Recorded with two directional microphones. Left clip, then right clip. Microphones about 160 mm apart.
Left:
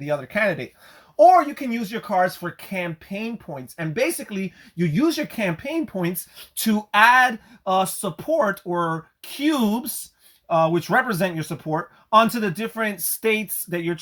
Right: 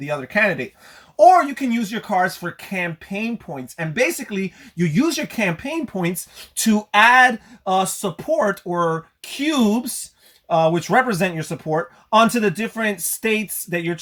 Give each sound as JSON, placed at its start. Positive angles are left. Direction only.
{"t": 0.0, "sound": "speech", "side_deg": 25}